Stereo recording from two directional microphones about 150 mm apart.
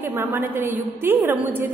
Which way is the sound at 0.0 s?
15° right (ahead or behind).